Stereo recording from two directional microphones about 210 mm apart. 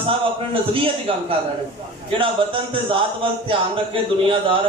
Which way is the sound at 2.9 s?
25° right (ahead or behind).